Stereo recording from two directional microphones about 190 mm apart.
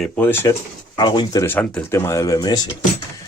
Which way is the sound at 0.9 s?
25° left (ahead or behind).